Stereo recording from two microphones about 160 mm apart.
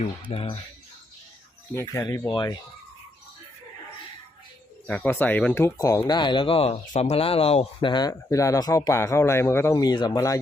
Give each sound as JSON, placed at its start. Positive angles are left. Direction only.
{"t": 0.3, "sound": "speech", "side_deg": 35}
{"t": 1.7, "sound": "speech", "side_deg": 20}
{"t": 4.9, "sound": "speech", "side_deg": 10}